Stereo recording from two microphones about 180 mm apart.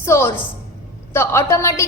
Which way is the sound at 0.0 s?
15° left (ahead or behind).